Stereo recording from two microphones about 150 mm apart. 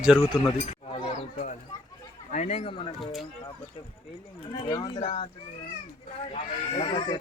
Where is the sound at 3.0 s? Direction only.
Centre (ahead or behind).